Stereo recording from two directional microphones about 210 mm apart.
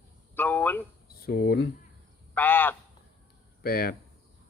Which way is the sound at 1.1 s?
45° left (ahead or behind).